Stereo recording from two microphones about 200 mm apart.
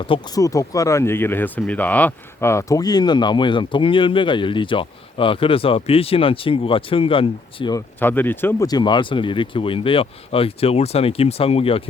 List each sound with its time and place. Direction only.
0.0 s speech: 20° left (ahead or behind)
7.9 s speech: 10° left (ahead or behind); by 11.8 s 30° left (ahead or behind)